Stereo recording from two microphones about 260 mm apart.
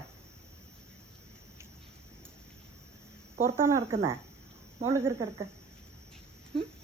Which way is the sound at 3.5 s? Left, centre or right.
Centre.